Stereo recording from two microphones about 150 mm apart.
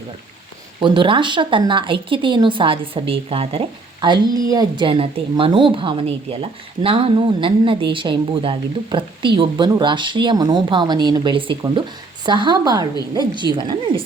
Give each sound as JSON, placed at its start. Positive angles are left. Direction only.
{"t": 0.8, "sound": "a woman's voice", "side_deg": -30}